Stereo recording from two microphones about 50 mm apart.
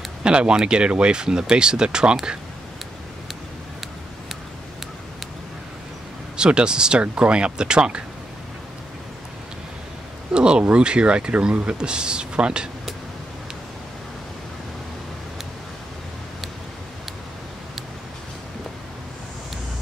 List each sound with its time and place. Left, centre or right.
0.2 s speech: centre
6.3 s speech: centre
10.3 s speech: centre